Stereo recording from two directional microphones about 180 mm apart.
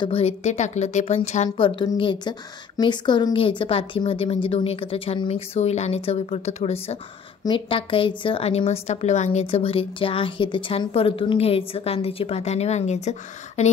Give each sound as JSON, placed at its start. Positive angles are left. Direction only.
{"t": 0.0, "sound": "a woman's voice", "side_deg": 35}